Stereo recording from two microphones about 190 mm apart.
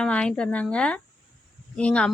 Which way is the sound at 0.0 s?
5° left (ahead or behind).